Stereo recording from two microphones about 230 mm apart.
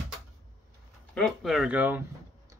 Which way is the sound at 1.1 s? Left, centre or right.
Centre.